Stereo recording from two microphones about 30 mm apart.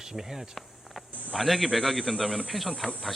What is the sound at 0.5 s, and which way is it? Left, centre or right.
A man's voice, centre.